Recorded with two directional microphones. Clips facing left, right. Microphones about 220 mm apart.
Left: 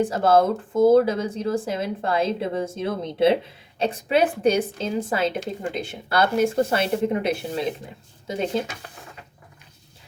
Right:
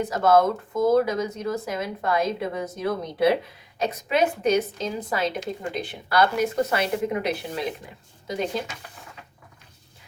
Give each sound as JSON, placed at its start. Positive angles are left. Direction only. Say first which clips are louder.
{"t": 0.0, "sound": "speech", "louder": "left 1 dB", "side_deg": 30}